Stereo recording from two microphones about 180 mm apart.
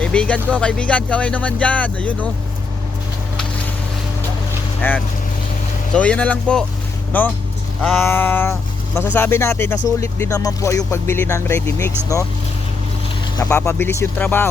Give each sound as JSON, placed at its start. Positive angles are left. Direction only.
{"t": 0.0, "sound": "speech", "side_deg": 5}
{"t": 4.8, "sound": "speech", "side_deg": 10}
{"t": 7.8, "sound": "a sound", "side_deg": 0}
{"t": 8.0, "sound": "speech", "side_deg": 10}
{"t": 13.4, "sound": "speech", "side_deg": 15}